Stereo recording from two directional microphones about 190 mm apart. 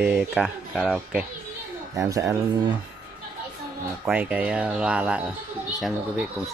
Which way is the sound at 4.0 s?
10° right (ahead or behind).